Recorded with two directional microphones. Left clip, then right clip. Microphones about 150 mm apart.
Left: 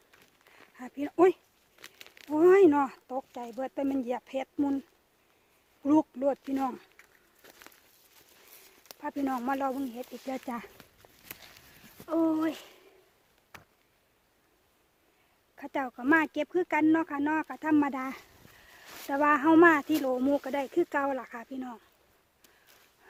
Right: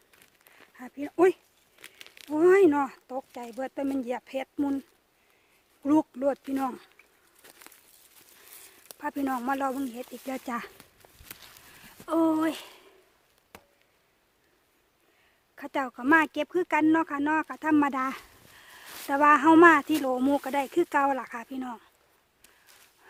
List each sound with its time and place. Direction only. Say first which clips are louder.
0.1 s a sound: right 1 dB; 20° right (ahead or behind)
0.7 s speech: left 1 dB; 5° left (ahead or behind)
1.1 s speech: right 1 dB; 10° right (ahead or behind)
1.8 s speech: right 2 dB; centre (ahead or behind)
5.8 s speech: right 1 dB; 20° right (ahead or behind)
7.4 s a sound: right 1 dB; 20° right (ahead or behind)
9.1 s speech: right 1 dB; 20° right (ahead or behind)
10.8 s a sound: right 1 dB; 10° right (ahead or behind)
12.0 s speech: right 3 dB; 35° right (ahead or behind)
15.5 s speech: right 3 dB; 25° right (ahead or behind)
20.1 s speech: right 2 dB; 25° right (ahead or behind)